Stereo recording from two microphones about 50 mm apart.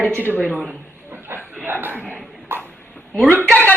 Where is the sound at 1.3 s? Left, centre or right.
Right.